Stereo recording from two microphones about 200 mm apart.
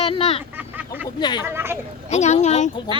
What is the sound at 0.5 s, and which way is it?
Vehicle, 10° right (ahead or behind).